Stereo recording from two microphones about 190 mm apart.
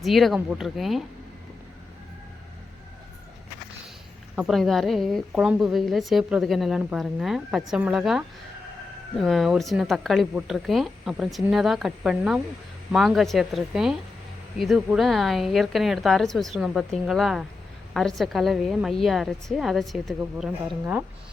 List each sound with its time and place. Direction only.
0.0 s a woman's voice: centre (ahead or behind)
4.4 s a woman's voice: centre (ahead or behind)